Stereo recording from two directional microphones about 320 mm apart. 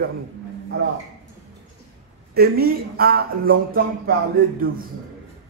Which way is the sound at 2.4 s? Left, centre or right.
Right.